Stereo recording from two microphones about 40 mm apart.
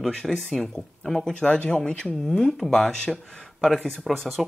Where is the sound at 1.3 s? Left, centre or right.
Left; by 4.4 s centre.